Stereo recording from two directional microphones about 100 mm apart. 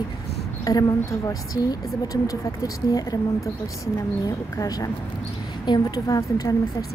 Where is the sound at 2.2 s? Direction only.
35° left (ahead or behind).